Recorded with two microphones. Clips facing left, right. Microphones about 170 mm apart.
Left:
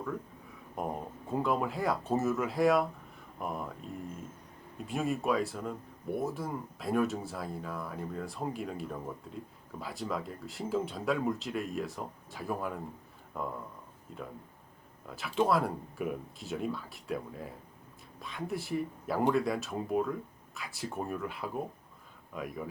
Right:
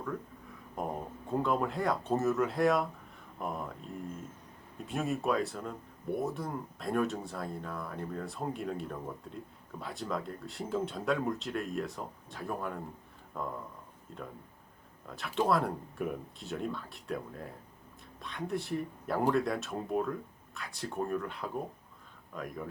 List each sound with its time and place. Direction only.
0.8 s speech: centre (ahead or behind)
4.9 s speech: centre (ahead or behind)